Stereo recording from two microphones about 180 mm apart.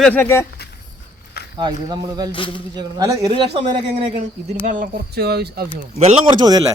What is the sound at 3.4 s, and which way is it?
Speech, 35° right (ahead or behind).